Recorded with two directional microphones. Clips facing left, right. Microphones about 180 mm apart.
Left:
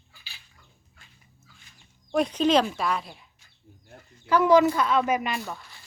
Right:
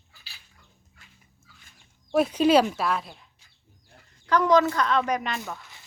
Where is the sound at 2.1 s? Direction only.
5° right (ahead or behind).